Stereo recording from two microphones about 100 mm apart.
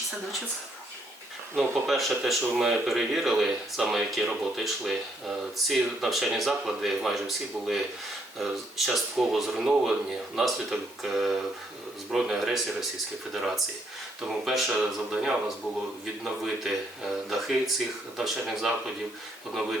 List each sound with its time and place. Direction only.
1.5 s speech: centre (ahead or behind)
8.9 s speech: centre (ahead or behind)
14.2 s speech: 5° right (ahead or behind)